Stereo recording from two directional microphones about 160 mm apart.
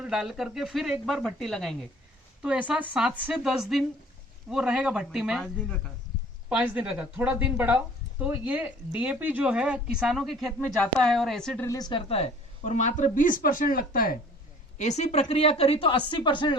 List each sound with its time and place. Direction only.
0.0 s speech: 5° right (ahead or behind)
6.5 s speech: 5° right (ahead or behind)
11.6 s a woman's voice: 25° left (ahead or behind); by 14.2 s 65° left (ahead or behind)
14.8 s speech: 45° left (ahead or behind); by 16.6 s 30° left (ahead or behind)